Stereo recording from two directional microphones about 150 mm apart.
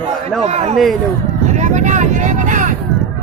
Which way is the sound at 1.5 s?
50° right (ahead or behind).